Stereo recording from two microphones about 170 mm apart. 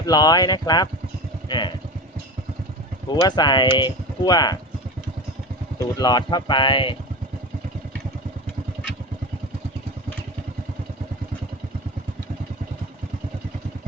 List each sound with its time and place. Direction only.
0.0 s speech: 25° left (ahead or behind)
1.5 s vehicle: 25° left (ahead or behind)
3.1 s speech: 25° left (ahead or behind)
6.0 s speech: 25° left (ahead or behind)